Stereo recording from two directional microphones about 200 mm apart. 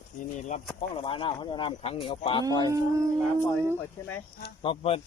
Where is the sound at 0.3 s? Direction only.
35° left (ahead or behind).